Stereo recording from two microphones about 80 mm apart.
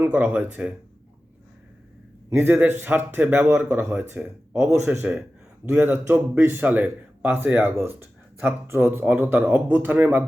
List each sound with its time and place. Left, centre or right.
0.0 s speech: centre
2.3 s speech: right
4.5 s speech: right
4.9 s speech: right